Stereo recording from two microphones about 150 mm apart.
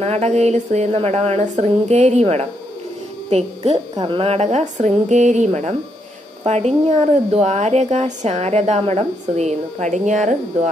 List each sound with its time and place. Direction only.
0.0 s speech: 45° right (ahead or behind)